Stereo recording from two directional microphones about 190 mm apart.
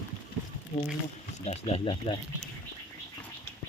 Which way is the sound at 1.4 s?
35° left (ahead or behind).